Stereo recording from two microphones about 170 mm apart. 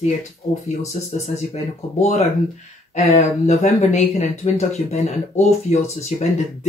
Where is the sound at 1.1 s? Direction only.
40° left (ahead or behind).